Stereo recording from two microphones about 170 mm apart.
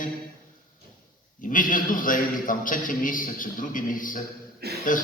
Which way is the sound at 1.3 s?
50° left (ahead or behind).